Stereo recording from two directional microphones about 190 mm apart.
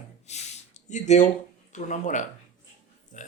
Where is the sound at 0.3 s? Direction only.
35° left (ahead or behind).